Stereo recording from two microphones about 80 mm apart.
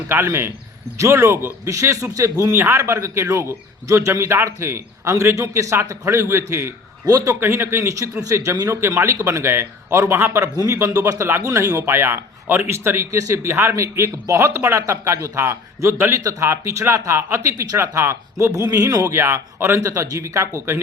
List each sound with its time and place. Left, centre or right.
0.1 s a man's voice: right
2.5 s a man's voice: right
7.1 s speech: right
7.3 s a man's voice: right
11.8 s a man's voice: right
19.1 s a man's voice: right